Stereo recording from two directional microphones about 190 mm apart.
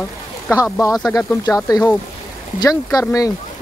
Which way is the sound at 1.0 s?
20° left (ahead or behind).